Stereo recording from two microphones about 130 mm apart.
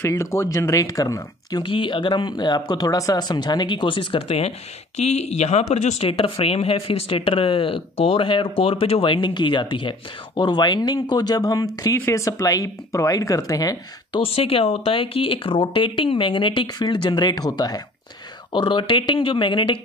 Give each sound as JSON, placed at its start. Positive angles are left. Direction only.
{"t": 0.0, "sound": "speech", "side_deg": 20}
{"t": 1.7, "sound": "speech", "side_deg": 40}
{"t": 14.2, "sound": "speech", "side_deg": 45}